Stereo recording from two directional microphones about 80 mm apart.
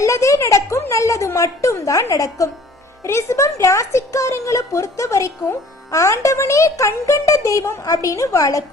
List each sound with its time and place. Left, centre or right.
0.0 s a woman's voice: left